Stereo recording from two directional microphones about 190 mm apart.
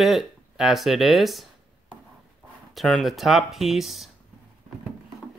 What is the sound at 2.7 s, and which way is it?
Speech, centre (ahead or behind).